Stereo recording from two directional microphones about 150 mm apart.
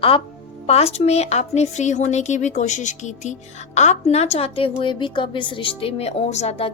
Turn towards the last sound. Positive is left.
turn(degrees=45)  # may be behind; listen again after turning